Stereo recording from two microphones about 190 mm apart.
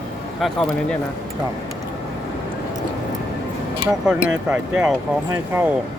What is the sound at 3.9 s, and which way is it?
Speech, 5° right (ahead or behind).